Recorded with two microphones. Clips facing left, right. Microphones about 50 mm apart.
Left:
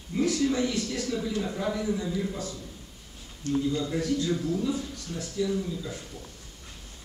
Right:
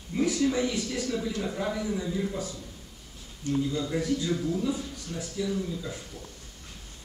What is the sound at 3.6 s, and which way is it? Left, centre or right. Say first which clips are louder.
Speech: left 1 dB; centre.